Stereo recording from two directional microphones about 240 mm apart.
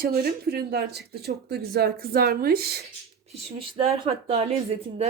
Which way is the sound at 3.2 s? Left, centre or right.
Right.